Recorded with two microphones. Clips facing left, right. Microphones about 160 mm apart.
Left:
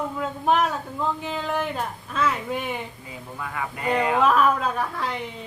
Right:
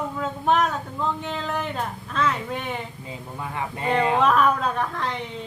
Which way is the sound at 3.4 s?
25° right (ahead or behind).